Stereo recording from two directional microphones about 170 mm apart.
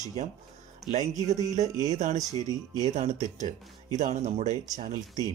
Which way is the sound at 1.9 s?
45° right (ahead or behind).